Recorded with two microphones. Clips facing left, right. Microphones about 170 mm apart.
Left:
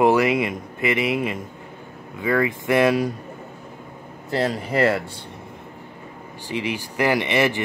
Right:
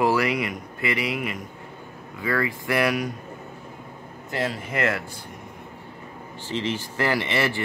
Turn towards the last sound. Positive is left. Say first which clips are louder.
# left 4 dB
turn(degrees=15)  # may be behind; listen again after turning